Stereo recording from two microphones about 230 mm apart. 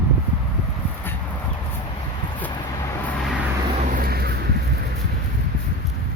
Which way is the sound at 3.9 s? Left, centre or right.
Right.